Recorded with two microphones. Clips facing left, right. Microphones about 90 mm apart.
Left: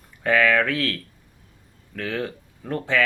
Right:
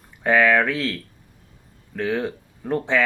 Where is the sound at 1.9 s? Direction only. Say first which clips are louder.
Right 4 dB; 25° right (ahead or behind).